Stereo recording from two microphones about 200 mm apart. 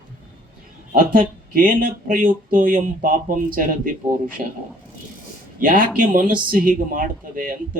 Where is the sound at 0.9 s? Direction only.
45° right (ahead or behind).